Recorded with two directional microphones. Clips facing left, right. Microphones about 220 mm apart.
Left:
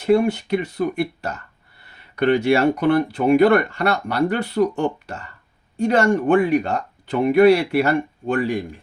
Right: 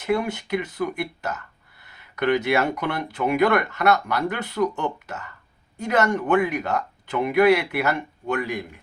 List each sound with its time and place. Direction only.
0.0 s speech: 30° left (ahead or behind)